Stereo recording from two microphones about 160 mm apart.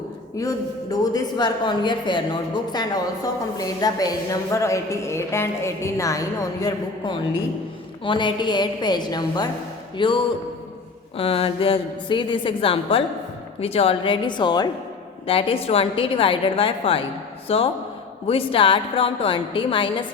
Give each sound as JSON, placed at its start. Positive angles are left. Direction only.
{"t": 0.3, "sound": "a woman's voice", "side_deg": 20}